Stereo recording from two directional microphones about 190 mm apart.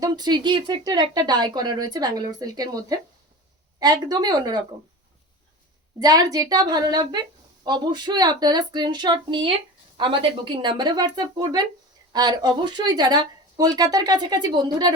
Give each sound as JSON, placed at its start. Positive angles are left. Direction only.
{"t": 0.0, "sound": "a woman's voice", "side_deg": -20}
{"t": 6.0, "sound": "a woman's voice", "side_deg": -20}